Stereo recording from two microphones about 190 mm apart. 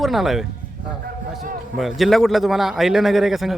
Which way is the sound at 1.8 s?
Centre (ahead or behind).